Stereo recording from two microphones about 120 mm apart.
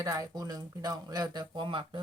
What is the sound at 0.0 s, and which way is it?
Speech, 30° right (ahead or behind).